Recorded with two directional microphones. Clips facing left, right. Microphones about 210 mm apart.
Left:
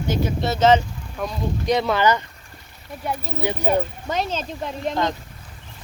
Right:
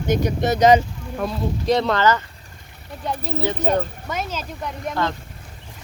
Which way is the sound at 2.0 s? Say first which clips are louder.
Even; 15° left (ahead or behind).